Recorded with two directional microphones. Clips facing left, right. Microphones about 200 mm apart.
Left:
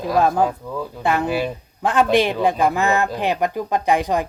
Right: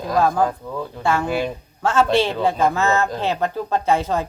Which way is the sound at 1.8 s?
15° left (ahead or behind).